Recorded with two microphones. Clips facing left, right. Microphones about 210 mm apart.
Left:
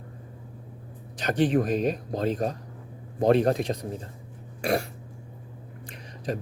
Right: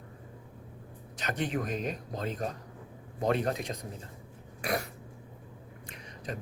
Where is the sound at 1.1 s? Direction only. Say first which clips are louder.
Left 10 dB; 35° left (ahead or behind).